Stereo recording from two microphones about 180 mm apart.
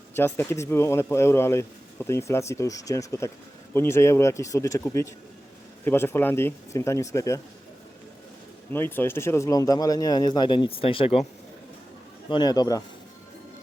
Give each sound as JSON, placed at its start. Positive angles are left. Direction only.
{"t": 0.2, "sound": "speech", "side_deg": 15}
{"t": 8.7, "sound": "speech", "side_deg": 10}
{"t": 12.3, "sound": "speech", "side_deg": 25}